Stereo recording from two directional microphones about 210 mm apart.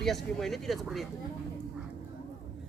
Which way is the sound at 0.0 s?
Centre (ahead or behind).